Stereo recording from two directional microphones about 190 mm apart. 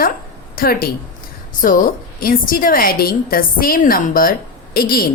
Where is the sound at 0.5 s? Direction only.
50° left (ahead or behind).